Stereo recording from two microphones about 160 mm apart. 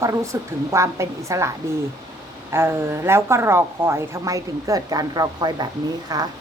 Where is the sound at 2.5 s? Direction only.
15° right (ahead or behind).